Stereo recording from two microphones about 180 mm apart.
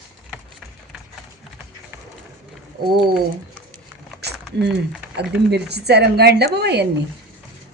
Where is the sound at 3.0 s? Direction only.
Centre (ahead or behind).